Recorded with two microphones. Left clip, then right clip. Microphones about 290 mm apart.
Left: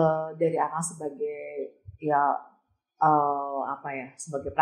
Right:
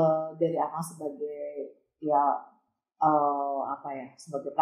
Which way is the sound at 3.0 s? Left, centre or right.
Left.